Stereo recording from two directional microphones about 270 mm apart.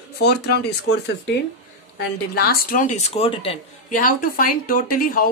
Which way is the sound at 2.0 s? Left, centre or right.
Left.